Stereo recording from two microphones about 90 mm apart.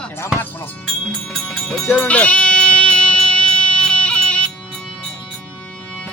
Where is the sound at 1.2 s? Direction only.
5° left (ahead or behind).